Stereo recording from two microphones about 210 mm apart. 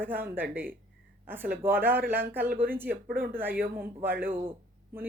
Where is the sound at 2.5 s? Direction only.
45° right (ahead or behind).